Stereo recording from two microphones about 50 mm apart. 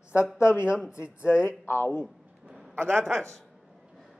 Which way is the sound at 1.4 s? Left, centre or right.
Left.